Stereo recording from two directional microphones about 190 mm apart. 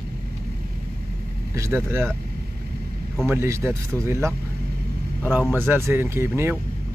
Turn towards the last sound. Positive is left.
turn(degrees=-10)  # may be behind; listen again after turning